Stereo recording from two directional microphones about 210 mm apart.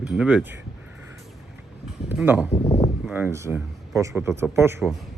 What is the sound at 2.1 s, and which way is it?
Speech, 10° right (ahead or behind).